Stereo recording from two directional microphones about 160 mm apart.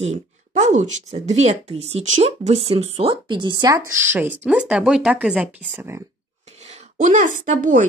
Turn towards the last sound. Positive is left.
turn(degrees=-55)  # may be behind; listen again after turning